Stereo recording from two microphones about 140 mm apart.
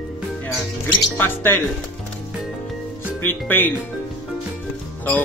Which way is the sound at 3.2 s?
15° left (ahead or behind).